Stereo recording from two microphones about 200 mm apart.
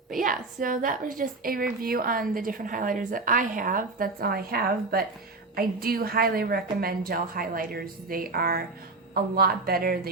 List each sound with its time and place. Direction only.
0.2 s a woman's voice: 45° right (ahead or behind)